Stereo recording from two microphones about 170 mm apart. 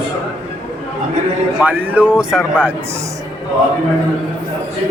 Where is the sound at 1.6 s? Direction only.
10° right (ahead or behind).